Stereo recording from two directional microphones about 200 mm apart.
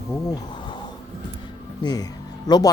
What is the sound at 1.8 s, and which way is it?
Speech, 20° left (ahead or behind).